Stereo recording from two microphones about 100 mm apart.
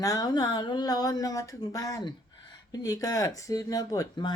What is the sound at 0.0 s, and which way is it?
Speech, 40° left (ahead or behind).